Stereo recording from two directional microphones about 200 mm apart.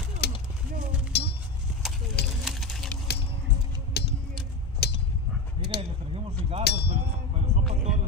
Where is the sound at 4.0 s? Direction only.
55° left (ahead or behind).